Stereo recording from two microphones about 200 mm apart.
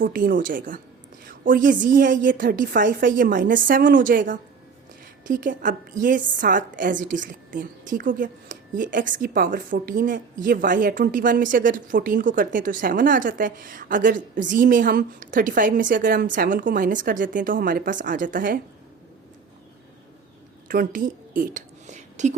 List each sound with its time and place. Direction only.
0.0 s a woman's voice: 45° right (ahead or behind)
20.7 s a woman's voice: 45° right (ahead or behind)